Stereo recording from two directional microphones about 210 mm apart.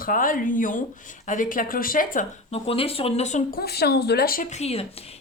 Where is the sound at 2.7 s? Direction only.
25° left (ahead or behind).